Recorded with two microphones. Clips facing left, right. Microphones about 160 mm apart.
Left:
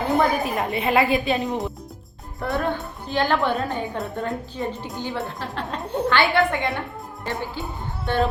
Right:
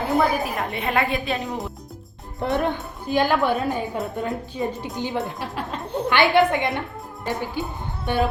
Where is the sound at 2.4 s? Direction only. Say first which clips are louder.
Right 2 dB; 20° right (ahead or behind).